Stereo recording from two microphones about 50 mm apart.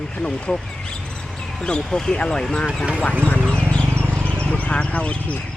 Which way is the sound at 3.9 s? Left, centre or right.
Right.